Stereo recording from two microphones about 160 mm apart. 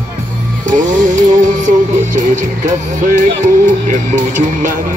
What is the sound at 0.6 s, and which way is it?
Music, 55° right (ahead or behind).